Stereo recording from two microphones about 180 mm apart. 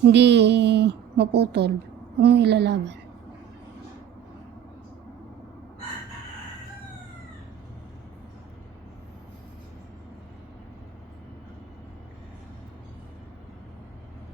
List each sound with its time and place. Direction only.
0.0 s a woman's voice: 70° right (ahead or behind)